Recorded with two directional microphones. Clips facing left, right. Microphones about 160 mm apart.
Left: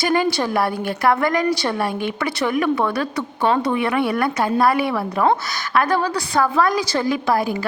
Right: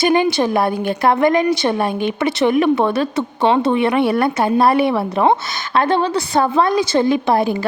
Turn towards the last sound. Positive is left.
turn(degrees=-25)  # may be behind; listen again after turning